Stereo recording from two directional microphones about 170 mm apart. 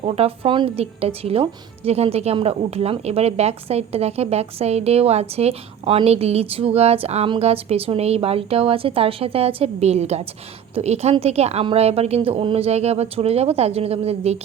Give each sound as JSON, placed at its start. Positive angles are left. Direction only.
{"t": 0.0, "sound": "speech", "side_deg": -35}